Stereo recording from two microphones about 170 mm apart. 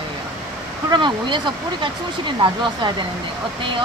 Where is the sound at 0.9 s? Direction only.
25° right (ahead or behind).